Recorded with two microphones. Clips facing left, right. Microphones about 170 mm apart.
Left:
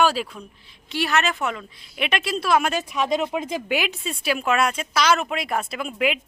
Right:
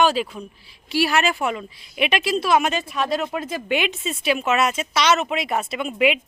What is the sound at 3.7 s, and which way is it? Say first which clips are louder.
A woman's voice: right 4 dB; centre (ahead or behind).